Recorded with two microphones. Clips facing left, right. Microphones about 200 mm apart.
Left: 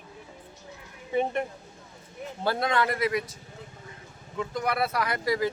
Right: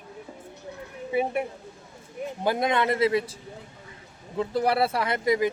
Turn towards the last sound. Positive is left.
turn(degrees=-20)  # may be behind; listen again after turning